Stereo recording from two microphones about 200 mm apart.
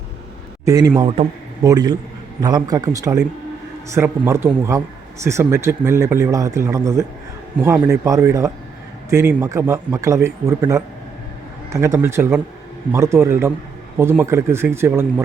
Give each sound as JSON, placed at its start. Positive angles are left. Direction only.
{"t": 0.6, "sound": "a man's voice", "side_deg": -15}